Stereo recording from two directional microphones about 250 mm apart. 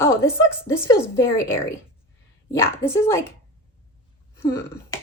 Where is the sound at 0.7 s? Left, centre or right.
Centre.